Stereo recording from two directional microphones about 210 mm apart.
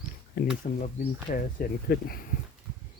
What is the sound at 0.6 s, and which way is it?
Speech, 40° left (ahead or behind).